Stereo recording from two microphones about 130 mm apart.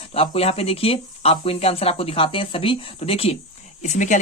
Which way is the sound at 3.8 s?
70° left (ahead or behind).